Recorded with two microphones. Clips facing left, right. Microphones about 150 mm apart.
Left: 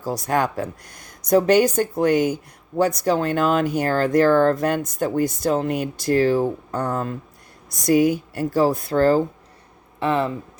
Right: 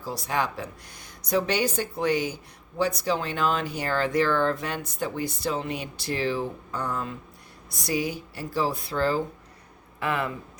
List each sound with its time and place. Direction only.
0.0 s speech: 45° left (ahead or behind)
10.0 s speech: 30° left (ahead or behind)